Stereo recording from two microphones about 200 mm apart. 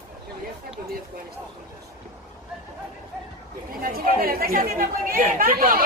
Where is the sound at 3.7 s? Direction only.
45° right (ahead or behind).